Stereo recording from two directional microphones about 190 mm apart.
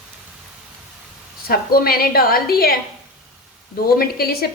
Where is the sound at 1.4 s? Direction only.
50° left (ahead or behind).